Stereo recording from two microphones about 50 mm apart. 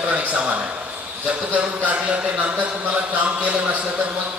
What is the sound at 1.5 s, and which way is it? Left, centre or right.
Speech, right.